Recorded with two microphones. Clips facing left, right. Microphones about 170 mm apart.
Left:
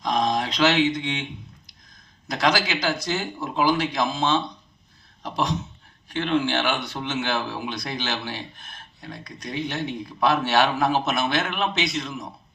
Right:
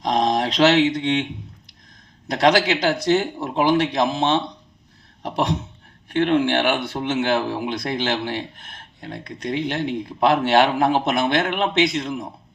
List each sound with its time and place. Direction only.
0.0 s a sound: 35° right (ahead or behind)
0.5 s speech: 70° right (ahead or behind)
2.2 s speech: 65° right (ahead or behind)